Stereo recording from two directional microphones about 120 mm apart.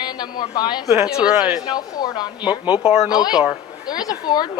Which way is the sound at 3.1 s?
35° left (ahead or behind).